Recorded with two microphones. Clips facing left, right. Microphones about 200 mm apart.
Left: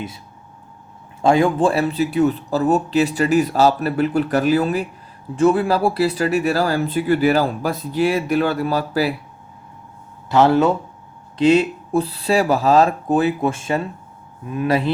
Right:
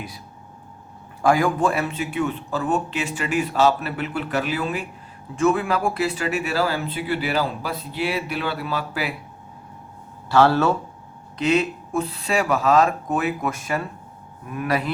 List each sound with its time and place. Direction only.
1.2 s speech: 25° left (ahead or behind)
10.2 s a man's voice: 20° left (ahead or behind)
11.3 s a man's voice: 30° left (ahead or behind)